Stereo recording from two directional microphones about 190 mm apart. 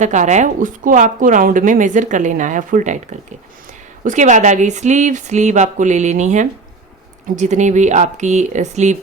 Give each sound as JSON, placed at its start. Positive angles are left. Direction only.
{"t": 0.0, "sound": "a woman's voice", "side_deg": -40}